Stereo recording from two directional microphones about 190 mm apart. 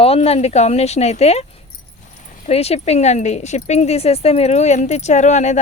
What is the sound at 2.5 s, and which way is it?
Speech, 35° left (ahead or behind).